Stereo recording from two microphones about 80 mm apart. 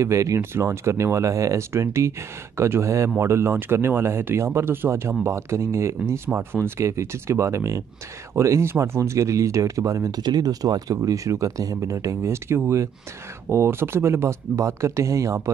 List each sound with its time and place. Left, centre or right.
0.0 s speech: right
10.2 s speech: right